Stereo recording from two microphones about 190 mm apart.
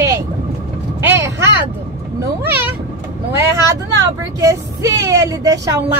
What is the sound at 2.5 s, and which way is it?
Speech, 10° right (ahead or behind).